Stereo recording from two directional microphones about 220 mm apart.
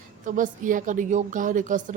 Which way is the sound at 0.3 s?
35° right (ahead or behind).